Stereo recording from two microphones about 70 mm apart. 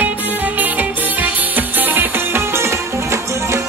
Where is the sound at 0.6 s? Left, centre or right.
Right.